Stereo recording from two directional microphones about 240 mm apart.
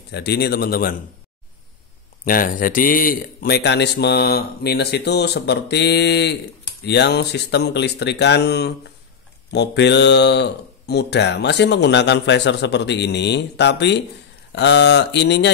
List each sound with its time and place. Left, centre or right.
0.1 s speech: left
2.2 s speech: left